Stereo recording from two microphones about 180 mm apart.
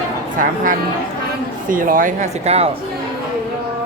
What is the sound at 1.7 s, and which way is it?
Speech, 50° right (ahead or behind).